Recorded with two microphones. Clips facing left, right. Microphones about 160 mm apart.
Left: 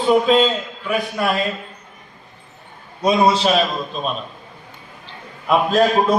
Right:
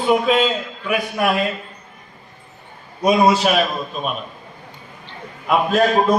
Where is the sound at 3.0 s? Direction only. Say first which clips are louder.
Right 1 dB; 10° right (ahead or behind).